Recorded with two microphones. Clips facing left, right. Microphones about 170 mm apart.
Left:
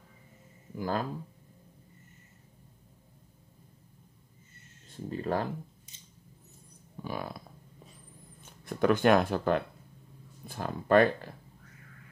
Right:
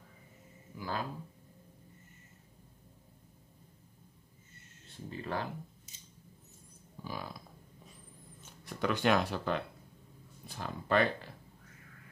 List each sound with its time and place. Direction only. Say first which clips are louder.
0.7 s speech: left 6 dB; 45° left (ahead or behind)
5.1 s speech: left 6 dB; 40° left (ahead or behind)
7.0 s hum: left 5 dB; 60° left (ahead or behind)
8.6 s speech: left 6 dB; 50° left (ahead or behind)